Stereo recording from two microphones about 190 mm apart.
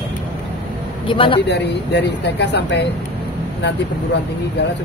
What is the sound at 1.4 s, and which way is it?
Speech, 65° left (ahead or behind).